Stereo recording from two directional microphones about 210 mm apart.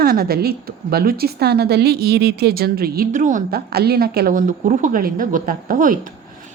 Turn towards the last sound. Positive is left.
turn(degrees=-40)  # may be behind; listen again after turning